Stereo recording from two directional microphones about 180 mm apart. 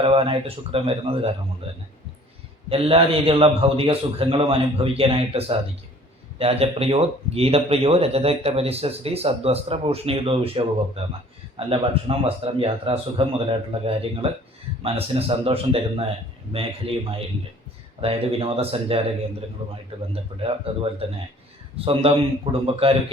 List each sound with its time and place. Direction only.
0.0 s speech: 30° right (ahead or behind)
2.6 s speech: 30° right (ahead or behind)
21.8 s speech: 30° right (ahead or behind)